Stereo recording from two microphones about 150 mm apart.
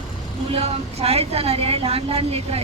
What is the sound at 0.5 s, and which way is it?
A woman's voice, 40° right (ahead or behind).